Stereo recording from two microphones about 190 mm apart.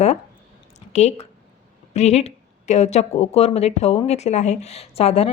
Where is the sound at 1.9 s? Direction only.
35° left (ahead or behind).